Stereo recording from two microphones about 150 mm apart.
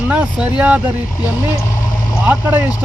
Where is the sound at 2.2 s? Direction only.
15° right (ahead or behind).